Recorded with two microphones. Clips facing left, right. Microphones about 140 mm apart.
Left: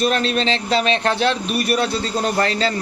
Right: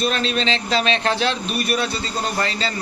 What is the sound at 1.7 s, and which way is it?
A man's voice, 65° left (ahead or behind).